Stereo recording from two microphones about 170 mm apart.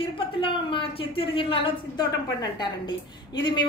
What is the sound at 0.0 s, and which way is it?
A woman's voice, 30° left (ahead or behind).